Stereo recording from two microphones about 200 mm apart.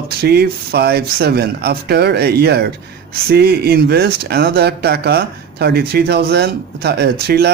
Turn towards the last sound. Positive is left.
turn(degrees=-55)  # may be behind; listen again after turning